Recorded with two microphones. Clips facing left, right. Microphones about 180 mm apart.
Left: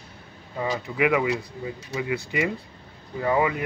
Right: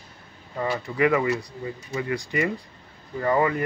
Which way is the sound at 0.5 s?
10° left (ahead or behind).